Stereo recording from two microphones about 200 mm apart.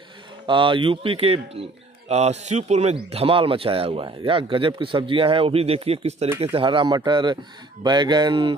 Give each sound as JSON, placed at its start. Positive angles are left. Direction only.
{"t": 0.5, "sound": "speech", "side_deg": -25}